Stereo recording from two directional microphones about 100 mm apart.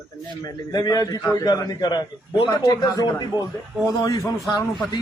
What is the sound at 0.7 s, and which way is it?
Speech, 40° left (ahead or behind).